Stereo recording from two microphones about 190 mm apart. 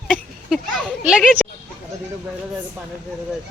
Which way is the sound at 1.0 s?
5° right (ahead or behind).